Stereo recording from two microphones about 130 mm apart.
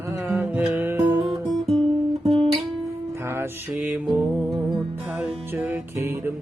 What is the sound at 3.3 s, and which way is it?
Music, 15° right (ahead or behind).